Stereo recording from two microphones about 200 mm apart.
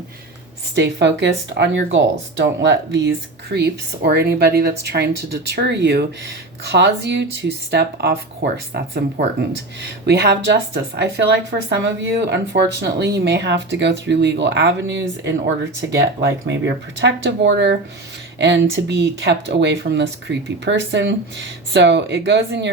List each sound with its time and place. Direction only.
0.8 s speech: 60° right (ahead or behind)